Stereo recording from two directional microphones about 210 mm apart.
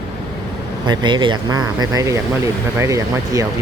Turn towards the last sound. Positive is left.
turn(degrees=-15)  # may be behind; listen again after turning